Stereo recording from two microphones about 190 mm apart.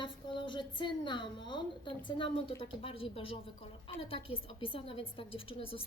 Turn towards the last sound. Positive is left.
turn(degrees=30)  # may be behind; listen again after turning